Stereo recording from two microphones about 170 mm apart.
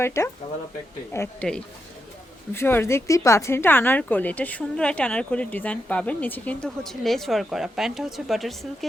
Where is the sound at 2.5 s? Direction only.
15° left (ahead or behind).